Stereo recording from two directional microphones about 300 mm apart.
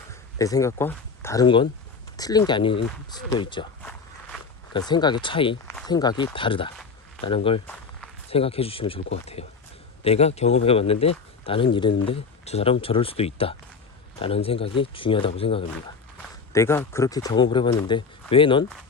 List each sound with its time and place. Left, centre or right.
0.1 s speech: centre